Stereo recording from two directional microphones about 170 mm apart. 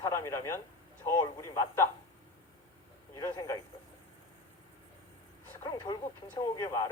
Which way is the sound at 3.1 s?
20° left (ahead or behind).